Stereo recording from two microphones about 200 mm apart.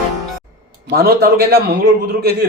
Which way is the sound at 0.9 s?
50° right (ahead or behind).